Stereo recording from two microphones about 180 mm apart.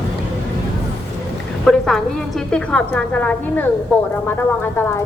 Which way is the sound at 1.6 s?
Centre (ahead or behind).